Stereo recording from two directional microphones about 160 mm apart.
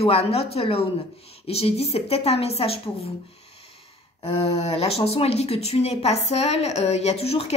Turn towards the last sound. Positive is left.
turn(degrees=40)  # may be behind; listen again after turning